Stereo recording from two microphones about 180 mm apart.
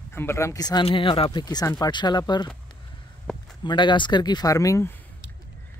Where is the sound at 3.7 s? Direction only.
25° left (ahead or behind).